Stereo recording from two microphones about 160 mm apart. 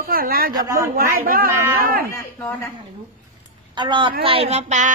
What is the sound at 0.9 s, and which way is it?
Chicken, 65° right (ahead or behind).